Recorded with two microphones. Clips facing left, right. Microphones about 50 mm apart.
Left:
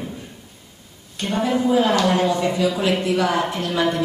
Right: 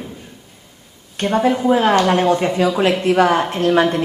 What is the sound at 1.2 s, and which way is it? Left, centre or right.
Speech, right.